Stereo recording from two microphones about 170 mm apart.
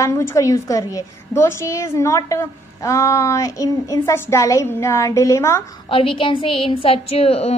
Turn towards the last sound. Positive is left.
turn(degrees=35)  # may be behind; listen again after turning